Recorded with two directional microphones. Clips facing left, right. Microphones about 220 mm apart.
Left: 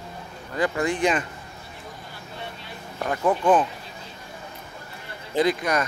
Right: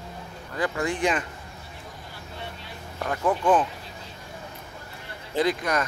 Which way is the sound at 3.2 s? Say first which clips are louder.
Left 2 dB; 15° left (ahead or behind).